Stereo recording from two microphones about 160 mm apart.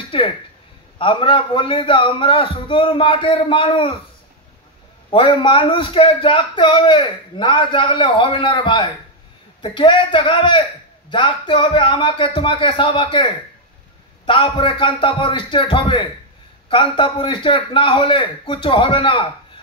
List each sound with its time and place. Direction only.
0.9 s a man's voice: 30° left (ahead or behind)
5.1 s a man's voice: 35° left (ahead or behind)
14.2 s a man's voice: 30° left (ahead or behind)